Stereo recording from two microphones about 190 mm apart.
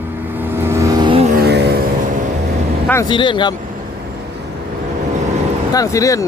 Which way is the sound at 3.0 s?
25° left (ahead or behind).